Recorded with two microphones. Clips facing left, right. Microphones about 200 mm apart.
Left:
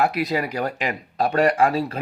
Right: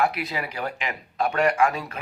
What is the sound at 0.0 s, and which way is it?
Speech, 40° left (ahead or behind).